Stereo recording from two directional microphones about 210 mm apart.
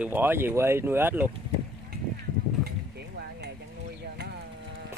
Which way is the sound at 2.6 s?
50° right (ahead or behind).